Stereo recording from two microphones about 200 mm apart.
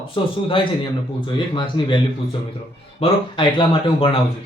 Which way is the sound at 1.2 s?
25° left (ahead or behind).